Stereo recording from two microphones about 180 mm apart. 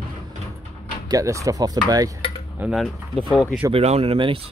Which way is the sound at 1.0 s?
20° right (ahead or behind).